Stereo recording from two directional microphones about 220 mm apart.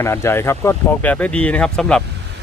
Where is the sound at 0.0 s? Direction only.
10° left (ahead or behind).